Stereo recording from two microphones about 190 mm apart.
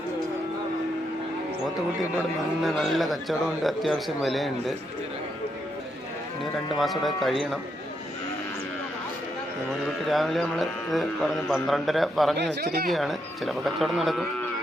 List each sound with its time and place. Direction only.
2.6 s speech: centre (ahead or behind)
6.4 s speech: centre (ahead or behind)
9.8 s speech: centre (ahead or behind)
12.4 s speech: 60° right (ahead or behind)
12.9 s speech: centre (ahead or behind)